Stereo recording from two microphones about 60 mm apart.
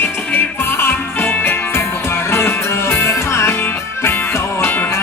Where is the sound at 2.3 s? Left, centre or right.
Left.